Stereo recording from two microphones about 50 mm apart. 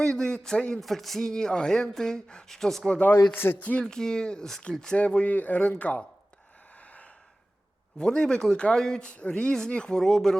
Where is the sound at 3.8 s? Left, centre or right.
Centre.